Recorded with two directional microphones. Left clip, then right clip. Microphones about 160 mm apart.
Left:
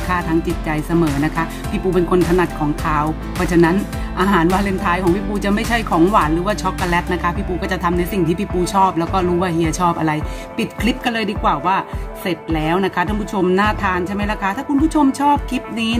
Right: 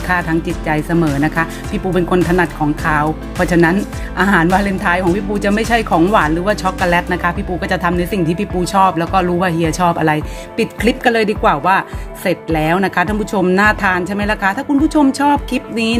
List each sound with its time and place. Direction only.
0.1 s speech: 25° right (ahead or behind)